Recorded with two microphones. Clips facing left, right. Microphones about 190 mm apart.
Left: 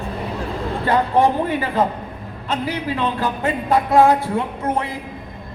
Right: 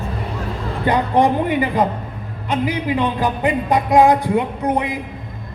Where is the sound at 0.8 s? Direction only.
15° right (ahead or behind).